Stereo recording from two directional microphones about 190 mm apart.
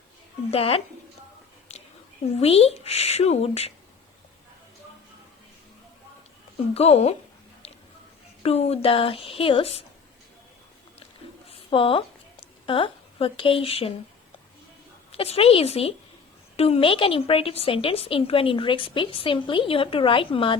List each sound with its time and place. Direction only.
0.5 s speech: 30° left (ahead or behind)
1.7 s whispering: 35° left (ahead or behind)
2.4 s speech: 30° left (ahead or behind)
6.7 s speech: 35° left (ahead or behind)
8.4 s a woman's voice: 35° left (ahead or behind)
11.4 s a sound: 30° left (ahead or behind)
12.6 s speech: 25° left (ahead or behind)
15.1 s a woman's voice: 30° left (ahead or behind)